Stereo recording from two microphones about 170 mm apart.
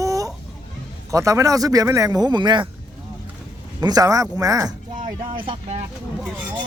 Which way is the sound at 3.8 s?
20° right (ahead or behind).